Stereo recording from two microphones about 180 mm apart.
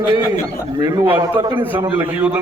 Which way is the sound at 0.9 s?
25° right (ahead or behind).